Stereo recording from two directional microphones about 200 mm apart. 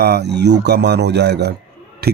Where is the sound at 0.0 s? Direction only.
55° right (ahead or behind).